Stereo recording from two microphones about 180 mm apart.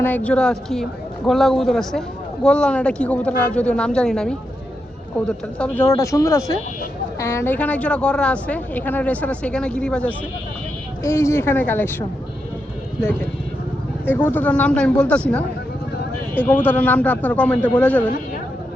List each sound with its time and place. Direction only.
0.0 s a man's voice: 10° left (ahead or behind)
5.5 s speech: 10° left (ahead or behind)